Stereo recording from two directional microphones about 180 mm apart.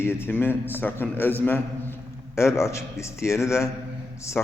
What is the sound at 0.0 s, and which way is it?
A man's voice, 10° left (ahead or behind).